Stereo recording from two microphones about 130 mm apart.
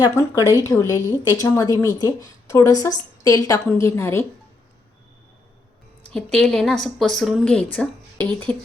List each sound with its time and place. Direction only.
0.2 s a woman's voice: 25° left (ahead or behind)
6.1 s a woman's voice: 5° left (ahead or behind)